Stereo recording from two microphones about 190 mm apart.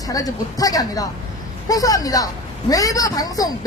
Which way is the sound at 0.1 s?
20° left (ahead or behind).